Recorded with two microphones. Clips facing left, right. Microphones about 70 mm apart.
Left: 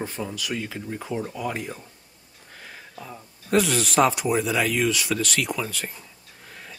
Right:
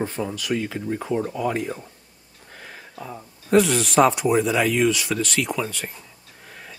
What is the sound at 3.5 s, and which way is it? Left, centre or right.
Speech, centre.